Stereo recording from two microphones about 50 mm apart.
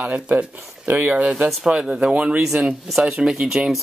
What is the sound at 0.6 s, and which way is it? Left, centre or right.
Speech, right.